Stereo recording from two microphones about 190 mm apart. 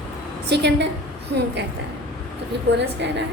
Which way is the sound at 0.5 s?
65° right (ahead or behind).